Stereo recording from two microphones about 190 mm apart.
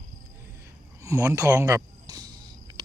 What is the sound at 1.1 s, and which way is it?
Speech, 15° right (ahead or behind).